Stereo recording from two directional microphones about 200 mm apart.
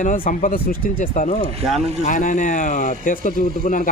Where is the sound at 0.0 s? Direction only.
40° left (ahead or behind).